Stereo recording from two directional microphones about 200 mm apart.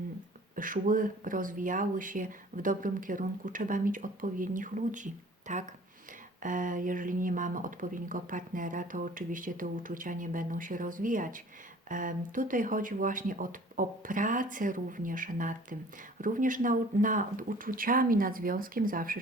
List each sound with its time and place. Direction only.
0.5 s speech: 40° right (ahead or behind)